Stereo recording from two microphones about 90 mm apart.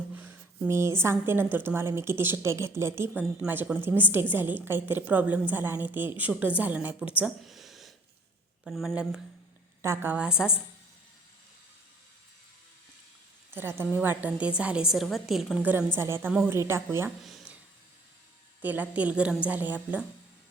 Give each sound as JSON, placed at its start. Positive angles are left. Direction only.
{"t": 0.2, "sound": "a sound", "side_deg": -20}
{"t": 0.7, "sound": "a woman's voice", "side_deg": -30}
{"t": 7.4, "sound": "a sound", "side_deg": 0}
{"t": 8.6, "sound": "speech", "side_deg": 0}
{"t": 9.8, "sound": "a woman's voice", "side_deg": -30}
{"t": 10.2, "sound": "a woman's voice", "side_deg": -10}
{"t": 13.5, "sound": "a woman's voice", "side_deg": -25}
{"t": 16.0, "sound": "a woman's voice", "side_deg": -30}
{"t": 17.2, "sound": "a sound", "side_deg": 0}
{"t": 18.6, "sound": "a woman's voice", "side_deg": -20}